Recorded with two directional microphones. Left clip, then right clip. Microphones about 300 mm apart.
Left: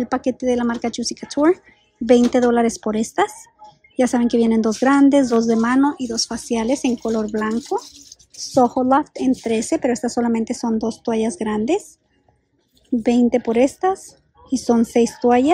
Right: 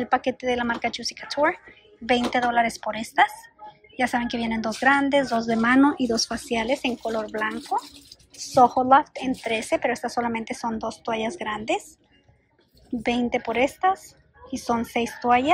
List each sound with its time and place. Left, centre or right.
0.0 s speech: centre
13.0 s speech: left